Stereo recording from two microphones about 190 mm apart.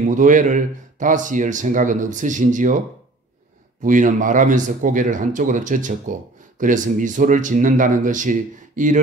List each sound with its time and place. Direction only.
0.0 s speech: 40° right (ahead or behind)
3.8 s speech: 45° right (ahead or behind)